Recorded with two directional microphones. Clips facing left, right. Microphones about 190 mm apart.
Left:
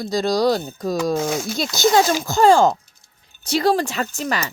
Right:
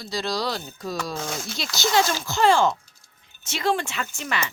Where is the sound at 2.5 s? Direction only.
40° left (ahead or behind).